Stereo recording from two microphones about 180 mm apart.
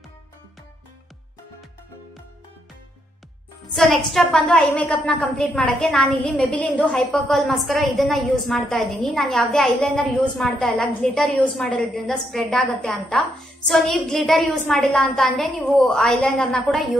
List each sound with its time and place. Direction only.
3.7 s a woman's voice: centre (ahead or behind)